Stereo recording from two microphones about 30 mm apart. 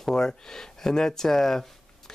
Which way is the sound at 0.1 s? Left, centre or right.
Left.